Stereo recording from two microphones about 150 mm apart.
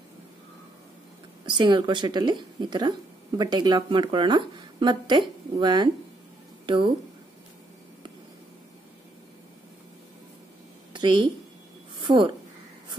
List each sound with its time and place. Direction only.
1.4 s speech: 30° right (ahead or behind)
10.9 s a sound: 30° right (ahead or behind)
12.0 s a woman's voice: 35° right (ahead or behind)